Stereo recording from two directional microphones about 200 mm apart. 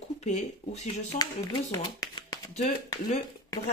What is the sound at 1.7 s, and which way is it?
Shuffling cards, 20° left (ahead or behind).